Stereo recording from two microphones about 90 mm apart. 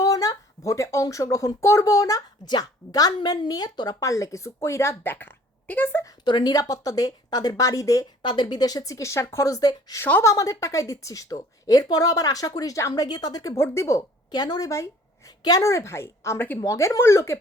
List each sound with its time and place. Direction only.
0.0 s speech: 40° left (ahead or behind)
4.0 s a woman's voice: 35° left (ahead or behind)
6.2 s speech: 55° left (ahead or behind); by 8.0 s 40° left (ahead or behind)
8.2 s a woman's voice: 55° left (ahead or behind); by 10.0 s 40° left (ahead or behind)
10.0 s a woman's voice: 25° left (ahead or behind)
10.2 s a woman's voice: 40° left (ahead or behind)
13.1 s speech: 50° left (ahead or behind)
13.6 s a woman's voice: 30° left (ahead or behind)
14.3 s a woman's voice: 50° left (ahead or behind); by 17.4 s 30° left (ahead or behind)